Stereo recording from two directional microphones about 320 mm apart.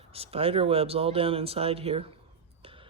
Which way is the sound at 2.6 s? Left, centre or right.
Centre.